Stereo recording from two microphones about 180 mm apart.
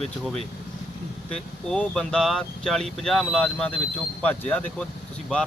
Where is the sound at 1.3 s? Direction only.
5° left (ahead or behind).